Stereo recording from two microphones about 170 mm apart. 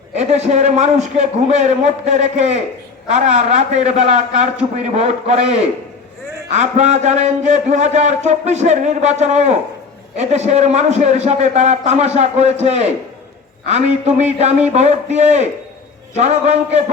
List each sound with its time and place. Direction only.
0.2 s a man's voice: 40° right (ahead or behind)